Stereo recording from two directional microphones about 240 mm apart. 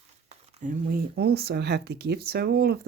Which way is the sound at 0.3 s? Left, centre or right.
Right.